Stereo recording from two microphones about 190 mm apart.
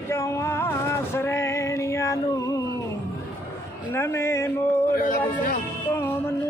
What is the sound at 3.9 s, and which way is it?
Speech, 15° left (ahead or behind).